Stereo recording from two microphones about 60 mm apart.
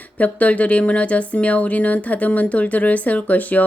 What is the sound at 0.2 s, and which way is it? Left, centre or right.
A woman's voice, left.